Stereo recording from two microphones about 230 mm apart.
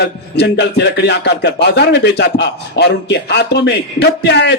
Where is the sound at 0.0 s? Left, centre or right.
Left.